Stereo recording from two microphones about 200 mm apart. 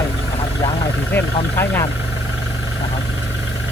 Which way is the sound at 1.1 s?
10° left (ahead or behind).